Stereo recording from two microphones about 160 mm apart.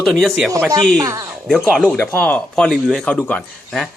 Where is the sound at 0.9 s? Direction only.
20° right (ahead or behind).